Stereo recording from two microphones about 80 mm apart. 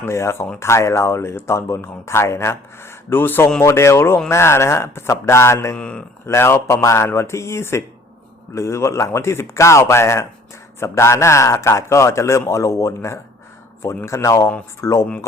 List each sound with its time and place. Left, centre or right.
0.0 s speech: left
5.7 s speech: centre
6.2 s speech: left